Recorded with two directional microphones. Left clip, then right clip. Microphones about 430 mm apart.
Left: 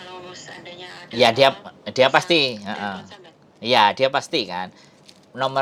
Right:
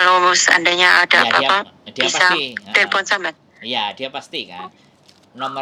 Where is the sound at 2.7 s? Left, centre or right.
Right.